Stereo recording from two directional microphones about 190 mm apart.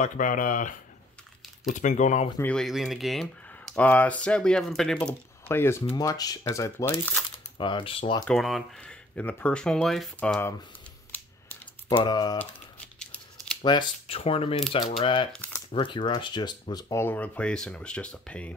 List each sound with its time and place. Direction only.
0.0 s speech: 45° left (ahead or behind)
2.3 s speech: 5° left (ahead or behind)
7.5 s speech: 25° left (ahead or behind)
8.3 s speech: centre (ahead or behind)
11.1 s typing: 10° left (ahead or behind)
12.0 s speech: 20° left (ahead or behind)
13.7 s speech: 25° left (ahead or behind)
15.3 s crumpling: 10° left (ahead or behind)
15.7 s speech: 25° left (ahead or behind); by 18.5 s 5° left (ahead or behind)